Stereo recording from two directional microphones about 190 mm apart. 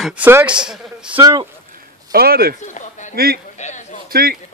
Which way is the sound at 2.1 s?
55° right (ahead or behind).